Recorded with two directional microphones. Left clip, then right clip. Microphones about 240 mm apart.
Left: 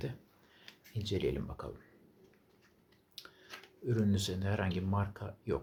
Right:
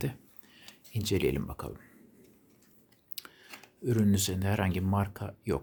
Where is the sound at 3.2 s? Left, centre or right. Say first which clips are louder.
Right 5 dB; right.